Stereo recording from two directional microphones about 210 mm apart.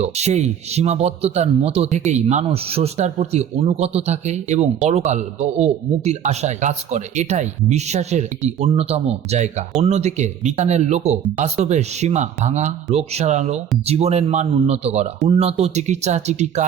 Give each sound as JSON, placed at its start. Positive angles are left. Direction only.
{"t": 0.0, "sound": "speech", "side_deg": -30}